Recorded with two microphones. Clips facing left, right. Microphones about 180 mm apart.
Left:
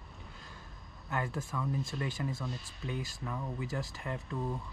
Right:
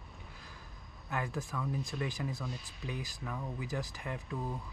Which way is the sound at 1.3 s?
Centre (ahead or behind).